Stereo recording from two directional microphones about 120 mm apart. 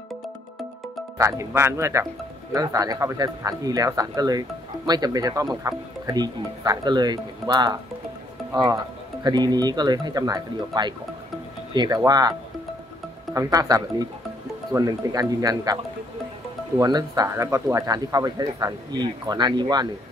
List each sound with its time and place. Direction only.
1.1 s speech: 25° right (ahead or behind)
9.2 s speech: 35° right (ahead or behind)